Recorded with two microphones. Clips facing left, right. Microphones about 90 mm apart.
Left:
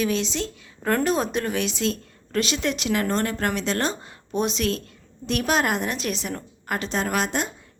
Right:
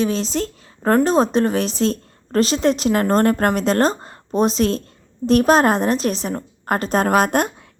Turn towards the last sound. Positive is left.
turn(degrees=-50)  # may be behind; listen again after turning